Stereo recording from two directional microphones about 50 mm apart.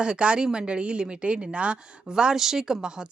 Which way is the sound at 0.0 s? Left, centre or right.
Right.